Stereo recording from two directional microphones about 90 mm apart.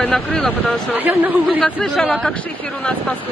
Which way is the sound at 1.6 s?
15° left (ahead or behind).